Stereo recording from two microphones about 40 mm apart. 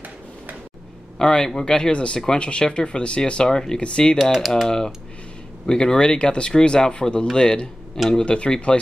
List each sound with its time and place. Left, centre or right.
1.1 s speech: centre
4.2 s speech: centre
4.6 s speech: centre
8.7 s speech: left